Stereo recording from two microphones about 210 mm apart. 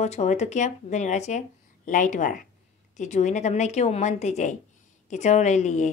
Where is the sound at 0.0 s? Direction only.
35° left (ahead or behind).